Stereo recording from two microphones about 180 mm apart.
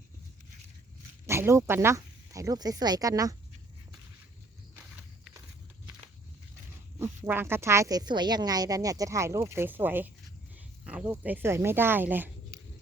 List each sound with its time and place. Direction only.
1.3 s speech: 15° right (ahead or behind)
7.3 s speech: 10° right (ahead or behind)